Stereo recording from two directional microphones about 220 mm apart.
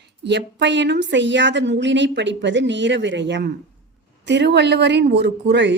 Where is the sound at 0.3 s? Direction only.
55° right (ahead or behind).